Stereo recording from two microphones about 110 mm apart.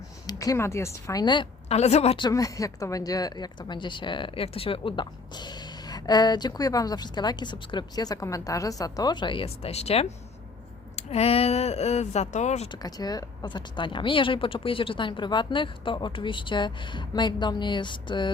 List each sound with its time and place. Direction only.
0.3 s speech: 30° left (ahead or behind)
1.2 s speech: 45° left (ahead or behind)
1.7 s speech: 75° left (ahead or behind)
2.3 s speech: 30° left (ahead or behind); by 12.6 s 90° left
12.8 s speech: 35° left (ahead or behind)